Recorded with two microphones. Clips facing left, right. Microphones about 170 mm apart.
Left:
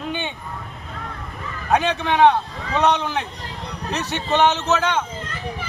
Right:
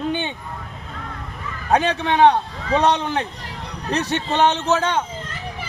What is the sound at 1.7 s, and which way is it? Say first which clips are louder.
A man's voice: right 1 dB; 35° right (ahead or behind).